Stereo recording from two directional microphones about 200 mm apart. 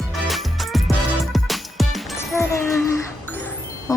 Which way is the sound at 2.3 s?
15° left (ahead or behind).